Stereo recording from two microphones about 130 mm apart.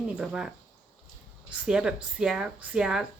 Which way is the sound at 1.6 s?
5° right (ahead or behind).